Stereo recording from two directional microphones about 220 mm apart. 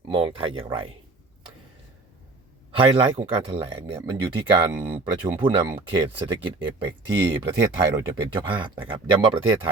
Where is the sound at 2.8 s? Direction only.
25° right (ahead or behind).